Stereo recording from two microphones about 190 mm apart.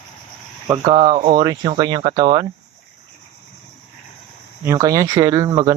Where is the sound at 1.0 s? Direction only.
35° right (ahead or behind).